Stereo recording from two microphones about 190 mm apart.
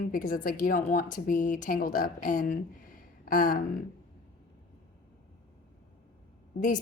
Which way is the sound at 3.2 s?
45° left (ahead or behind).